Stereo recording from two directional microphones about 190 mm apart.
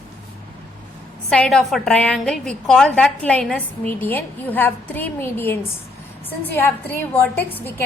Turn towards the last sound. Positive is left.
turn(degrees=10)  # may be behind; listen again after turning